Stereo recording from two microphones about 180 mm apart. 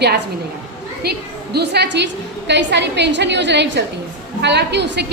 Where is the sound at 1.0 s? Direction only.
60° right (ahead or behind).